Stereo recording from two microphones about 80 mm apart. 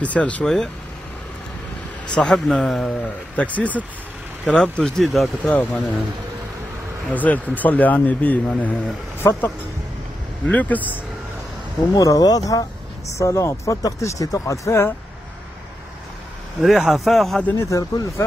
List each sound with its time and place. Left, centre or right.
0.0 s speech: centre
2.0 s speech: centre
3.3 s speech: centre
5.4 s speech: left
7.1 s speech: centre
9.2 s speech: left
10.4 s speech: centre
11.9 s speech: left
13.2 s speech: left
16.6 s speech: centre
17.6 s speech: left